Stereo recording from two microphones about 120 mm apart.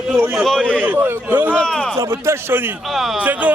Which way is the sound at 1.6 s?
5° left (ahead or behind).